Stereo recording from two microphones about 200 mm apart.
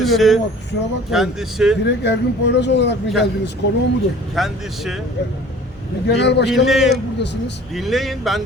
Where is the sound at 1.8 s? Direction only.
60° left (ahead or behind).